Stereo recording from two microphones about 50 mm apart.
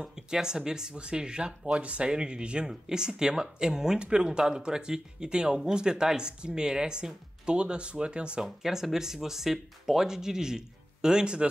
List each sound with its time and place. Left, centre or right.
0.0 s speech: centre
8.5 s speech: centre